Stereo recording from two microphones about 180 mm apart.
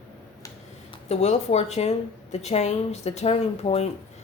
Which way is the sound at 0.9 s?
35° left (ahead or behind).